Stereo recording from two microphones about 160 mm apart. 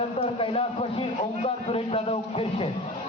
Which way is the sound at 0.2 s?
35° left (ahead or behind).